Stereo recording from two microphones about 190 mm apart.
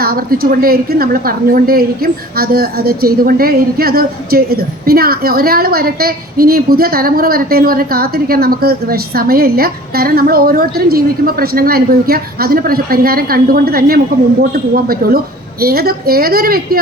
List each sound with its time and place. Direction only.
0.0 s a woman's voice: 50° right (ahead or behind)